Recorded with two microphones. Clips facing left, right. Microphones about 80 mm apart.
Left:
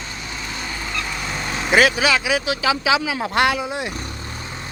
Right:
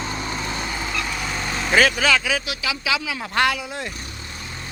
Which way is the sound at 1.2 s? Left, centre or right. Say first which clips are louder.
Even; centre.